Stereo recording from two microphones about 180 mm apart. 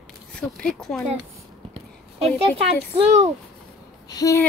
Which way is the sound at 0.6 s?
5° left (ahead or behind).